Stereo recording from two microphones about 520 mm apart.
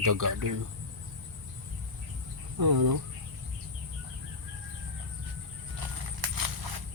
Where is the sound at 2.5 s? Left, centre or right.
Right.